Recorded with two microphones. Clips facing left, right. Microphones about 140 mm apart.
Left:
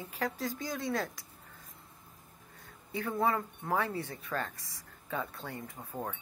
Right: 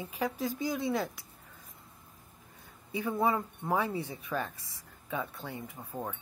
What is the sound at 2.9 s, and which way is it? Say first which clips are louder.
Speech: right 1 dB; 10° right (ahead or behind).